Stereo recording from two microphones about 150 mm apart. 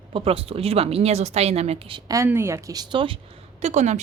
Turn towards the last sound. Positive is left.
turn(degrees=-50)  # may be behind; listen again after turning